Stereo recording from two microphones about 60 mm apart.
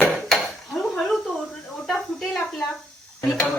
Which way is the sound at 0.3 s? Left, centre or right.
Centre.